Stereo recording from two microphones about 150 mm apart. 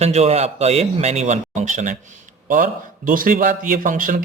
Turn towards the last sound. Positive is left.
turn(degrees=-60)  # may be behind; listen again after turning